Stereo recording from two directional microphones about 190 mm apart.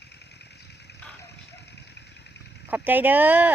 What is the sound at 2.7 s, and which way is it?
Speech, 10° right (ahead or behind).